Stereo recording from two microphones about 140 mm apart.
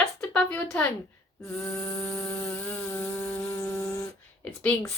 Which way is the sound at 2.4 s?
10° left (ahead or behind).